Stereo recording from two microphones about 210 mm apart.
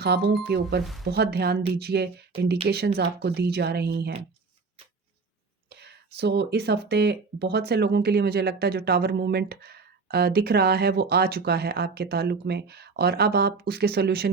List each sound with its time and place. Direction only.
0.0 s speech: 50° right (ahead or behind)
5.6 s speech: 50° right (ahead or behind)